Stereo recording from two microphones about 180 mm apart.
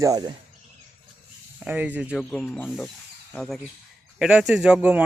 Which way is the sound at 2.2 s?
5° left (ahead or behind).